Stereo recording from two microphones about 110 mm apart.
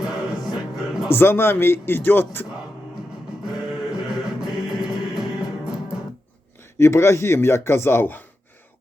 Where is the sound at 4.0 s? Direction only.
5° right (ahead or behind).